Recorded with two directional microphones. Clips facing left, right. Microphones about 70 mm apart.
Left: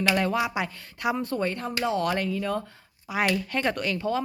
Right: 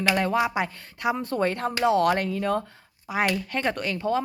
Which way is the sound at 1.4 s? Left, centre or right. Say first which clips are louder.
Right 4 dB; right.